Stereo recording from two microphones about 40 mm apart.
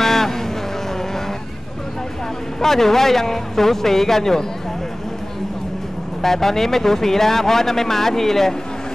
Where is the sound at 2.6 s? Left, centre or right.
Centre.